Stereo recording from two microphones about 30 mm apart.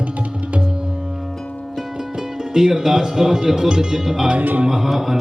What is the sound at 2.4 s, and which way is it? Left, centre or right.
Speech, centre.